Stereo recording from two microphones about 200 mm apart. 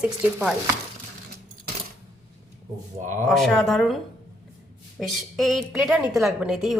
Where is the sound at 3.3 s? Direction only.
Centre (ahead or behind).